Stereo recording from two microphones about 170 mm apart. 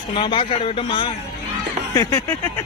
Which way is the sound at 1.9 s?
20° left (ahead or behind).